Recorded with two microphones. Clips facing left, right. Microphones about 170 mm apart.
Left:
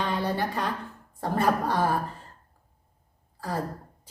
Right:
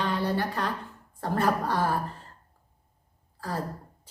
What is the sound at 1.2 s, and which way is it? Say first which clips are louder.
Speech: left 1 dB; 20° left (ahead or behind).